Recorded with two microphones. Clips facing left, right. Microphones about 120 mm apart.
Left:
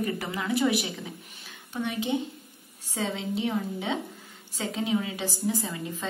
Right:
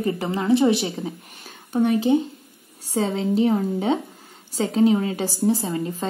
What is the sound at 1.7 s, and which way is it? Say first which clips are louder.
Speech: right 10 dB; 40° right (ahead or behind).